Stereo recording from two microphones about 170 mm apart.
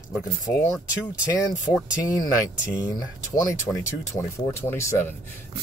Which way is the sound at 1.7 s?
20° left (ahead or behind).